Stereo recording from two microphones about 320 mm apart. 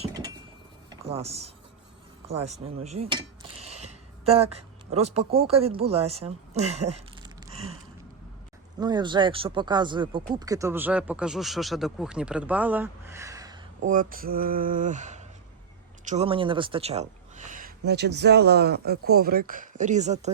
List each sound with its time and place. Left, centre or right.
0.0 s cutlery: centre
0.9 s a sound: centre
2.4 s speech: centre
6.7 s a sound: centre
8.8 s speech: centre
13.8 s speech: right